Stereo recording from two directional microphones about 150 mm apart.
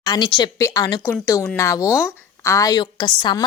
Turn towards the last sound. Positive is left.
turn(degrees=30)  # may be behind; listen again after turning